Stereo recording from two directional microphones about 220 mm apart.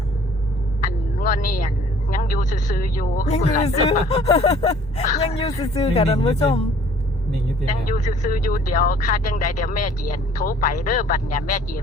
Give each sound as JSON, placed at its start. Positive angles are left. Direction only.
{"t": 0.8, "sound": "speech", "side_deg": 35}
{"t": 5.5, "sound": "speech", "side_deg": 15}
{"t": 5.9, "sound": "speech", "side_deg": 30}
{"t": 7.9, "sound": "speech", "side_deg": 35}